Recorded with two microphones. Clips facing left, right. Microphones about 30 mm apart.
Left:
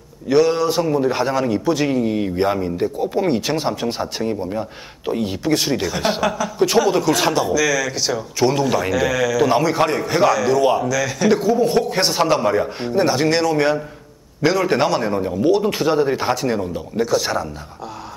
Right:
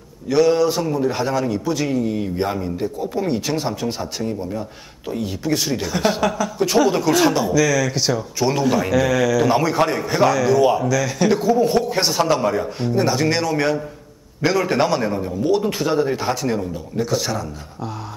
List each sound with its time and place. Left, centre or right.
0.3 s a man's voice: centre
5.8 s a man's voice: centre; by 17.5 s left